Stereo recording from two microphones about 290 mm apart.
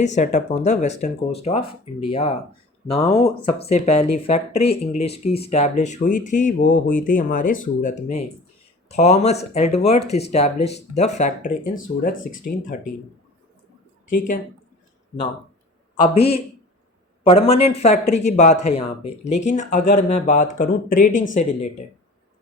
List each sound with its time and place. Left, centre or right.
0.0 s speech: left
8.9 s speech: left
14.1 s speech: left
16.0 s speech: centre